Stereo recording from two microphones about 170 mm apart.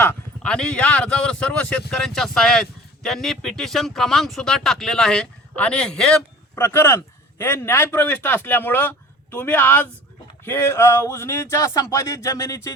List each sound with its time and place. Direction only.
0.0 s speech: 10° left (ahead or behind)